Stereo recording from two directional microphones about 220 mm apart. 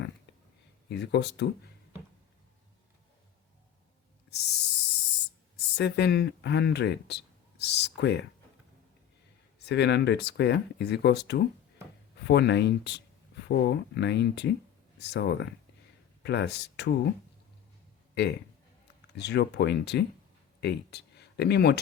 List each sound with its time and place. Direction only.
0.9 s speech: 50° left (ahead or behind)
4.3 s a sound: 50° left (ahead or behind)
5.7 s speech: 50° left (ahead or behind)
9.6 s speech: 50° left (ahead or behind)
18.1 s speech: 50° left (ahead or behind)